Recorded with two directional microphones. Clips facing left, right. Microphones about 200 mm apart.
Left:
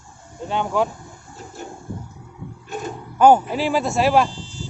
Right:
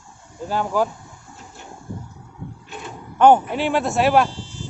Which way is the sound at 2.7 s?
45° left (ahead or behind).